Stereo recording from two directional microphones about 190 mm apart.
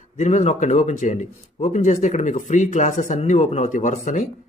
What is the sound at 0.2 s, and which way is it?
Speech, 35° left (ahead or behind).